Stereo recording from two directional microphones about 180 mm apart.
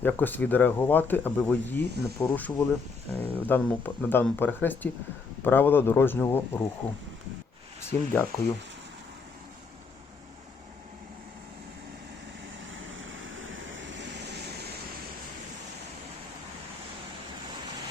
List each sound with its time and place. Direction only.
0.0 s speech: 10° left (ahead or behind)
7.8 s speech: 15° left (ahead or behind)
12.7 s vehicle: 90° right; by 14.7 s 70° right (ahead or behind)